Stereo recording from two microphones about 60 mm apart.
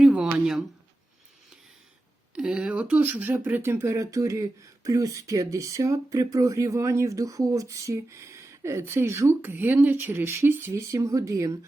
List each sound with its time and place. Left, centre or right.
0.2 s a sound: centre
2.3 s speech: centre
2.7 s speech: right
3.0 s speech: right
10.9 s speech: right